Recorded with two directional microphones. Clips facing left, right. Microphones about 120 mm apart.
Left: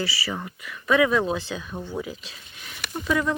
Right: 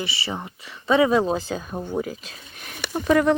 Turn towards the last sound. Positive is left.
turn(degrees=-55)  # may be behind; listen again after turning